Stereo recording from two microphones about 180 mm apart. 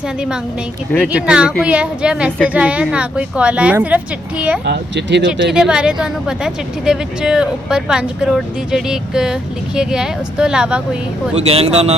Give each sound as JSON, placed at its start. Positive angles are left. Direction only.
{"t": 1.0, "sound": "a woman's voice", "side_deg": -5}
{"t": 4.6, "sound": "speech", "side_deg": -70}
{"t": 5.5, "sound": "a woman's voice", "side_deg": -5}
{"t": 11.4, "sound": "speech", "side_deg": -35}